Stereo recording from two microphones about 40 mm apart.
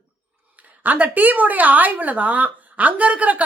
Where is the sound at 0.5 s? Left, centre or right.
Right.